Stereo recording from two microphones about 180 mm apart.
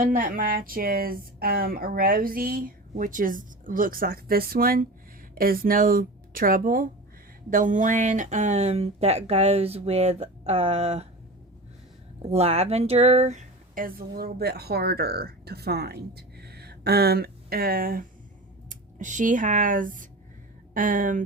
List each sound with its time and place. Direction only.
0.0 s speech: 50° right (ahead or behind)
12.3 s speech: 35° right (ahead or behind)